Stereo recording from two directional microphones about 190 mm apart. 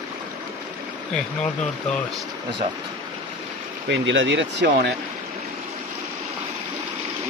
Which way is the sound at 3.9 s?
75° right (ahead or behind).